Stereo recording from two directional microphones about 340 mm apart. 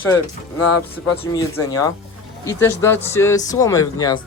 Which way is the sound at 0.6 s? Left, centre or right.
Left.